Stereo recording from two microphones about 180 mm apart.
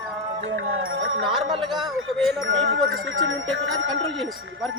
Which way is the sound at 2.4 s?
90° right.